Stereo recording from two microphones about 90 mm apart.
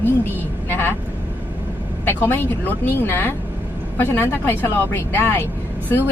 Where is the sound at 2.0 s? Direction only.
25° left (ahead or behind).